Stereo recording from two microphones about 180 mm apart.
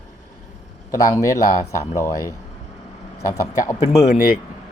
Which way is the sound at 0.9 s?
15° left (ahead or behind).